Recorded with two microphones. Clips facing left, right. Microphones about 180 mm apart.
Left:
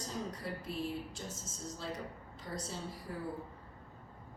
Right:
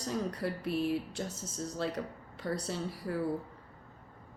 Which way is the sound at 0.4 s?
70° right (ahead or behind).